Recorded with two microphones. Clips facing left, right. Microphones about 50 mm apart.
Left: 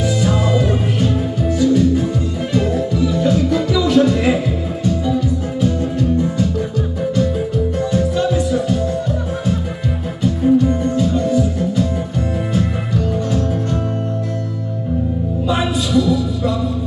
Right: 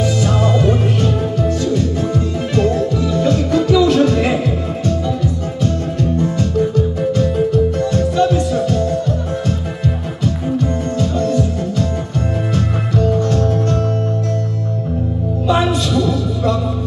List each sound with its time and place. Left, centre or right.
0.0 s music: centre
6.1 s music: centre
10.2 s music: centre
15.4 s a sound: centre